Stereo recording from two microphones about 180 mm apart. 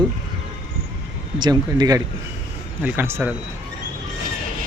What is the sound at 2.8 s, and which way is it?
Speech, 10° right (ahead or behind).